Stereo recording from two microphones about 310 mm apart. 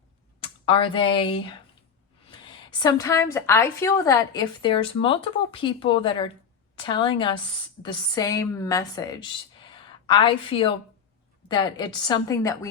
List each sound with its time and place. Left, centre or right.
0.4 s speech: centre
2.6 s a woman's voice: centre